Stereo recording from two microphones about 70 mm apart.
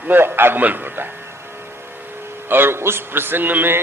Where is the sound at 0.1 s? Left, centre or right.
Right.